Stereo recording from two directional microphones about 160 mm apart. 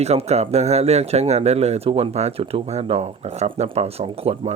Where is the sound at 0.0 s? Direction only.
40° right (ahead or behind).